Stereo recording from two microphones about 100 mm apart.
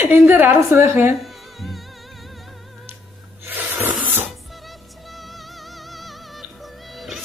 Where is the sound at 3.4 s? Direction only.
20° right (ahead or behind).